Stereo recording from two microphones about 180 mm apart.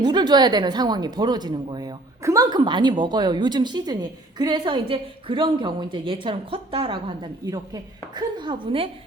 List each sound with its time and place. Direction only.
0.0 s a woman's voice: 25° right (ahead or behind)